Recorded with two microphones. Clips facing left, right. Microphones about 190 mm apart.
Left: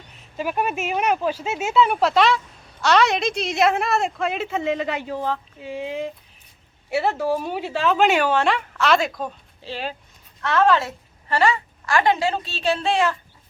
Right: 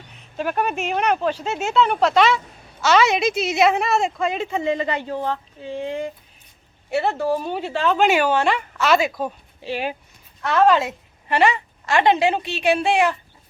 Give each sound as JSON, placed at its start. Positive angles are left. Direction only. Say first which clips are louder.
{"t": 0.1, "sound": "a woman's voice", "louder": "right 1 dB", "side_deg": 5}